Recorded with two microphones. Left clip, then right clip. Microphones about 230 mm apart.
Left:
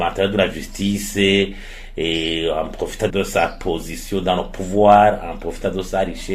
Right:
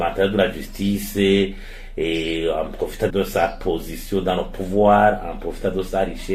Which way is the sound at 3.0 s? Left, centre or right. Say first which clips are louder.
Left 1 dB; left.